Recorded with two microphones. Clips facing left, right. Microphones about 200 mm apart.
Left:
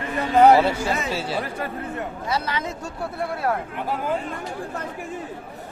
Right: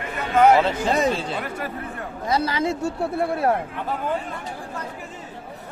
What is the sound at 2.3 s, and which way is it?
Speech, 35° right (ahead or behind).